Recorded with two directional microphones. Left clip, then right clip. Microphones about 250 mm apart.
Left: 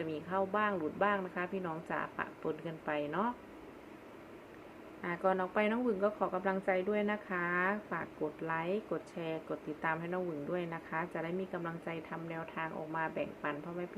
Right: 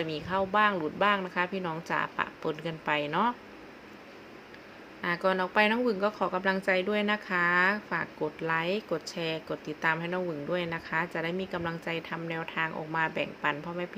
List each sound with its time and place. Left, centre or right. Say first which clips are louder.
0.0 s speech: right 5 dB; centre
5.0 s speech: right 5 dB; centre